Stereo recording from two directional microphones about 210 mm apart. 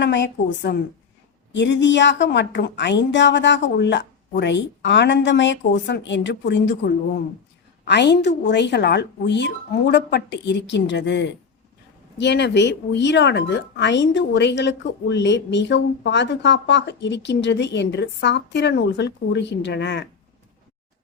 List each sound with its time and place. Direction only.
0.0 s speech: 55° left (ahead or behind)